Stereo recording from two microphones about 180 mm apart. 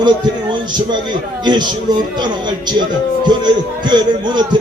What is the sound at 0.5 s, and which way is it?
A man's voice, 25° right (ahead or behind).